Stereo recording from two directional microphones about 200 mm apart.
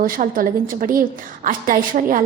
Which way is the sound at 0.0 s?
45° right (ahead or behind).